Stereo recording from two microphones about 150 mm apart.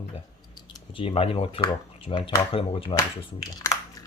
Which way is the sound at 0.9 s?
40° left (ahead or behind).